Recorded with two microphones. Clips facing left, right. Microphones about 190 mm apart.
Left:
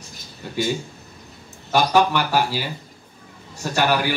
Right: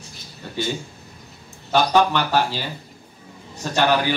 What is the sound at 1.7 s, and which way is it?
Speech, 10° left (ahead or behind).